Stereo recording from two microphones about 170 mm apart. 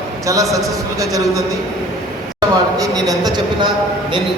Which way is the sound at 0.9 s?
20° right (ahead or behind).